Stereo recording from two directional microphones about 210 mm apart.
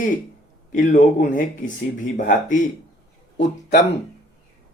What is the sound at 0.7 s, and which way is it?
Speech, 35° left (ahead or behind).